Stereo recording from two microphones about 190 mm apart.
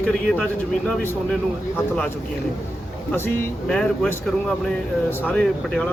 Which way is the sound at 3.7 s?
5° left (ahead or behind).